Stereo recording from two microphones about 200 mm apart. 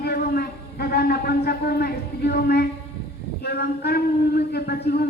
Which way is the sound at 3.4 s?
55° left (ahead or behind).